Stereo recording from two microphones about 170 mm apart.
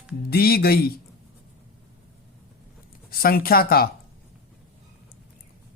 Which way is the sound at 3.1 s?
60° left (ahead or behind).